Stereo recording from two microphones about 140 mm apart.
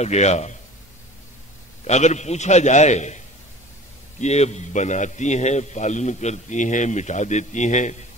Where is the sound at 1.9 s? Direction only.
55° left (ahead or behind).